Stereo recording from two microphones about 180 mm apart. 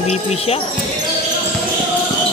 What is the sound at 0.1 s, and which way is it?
Speech, 35° left (ahead or behind).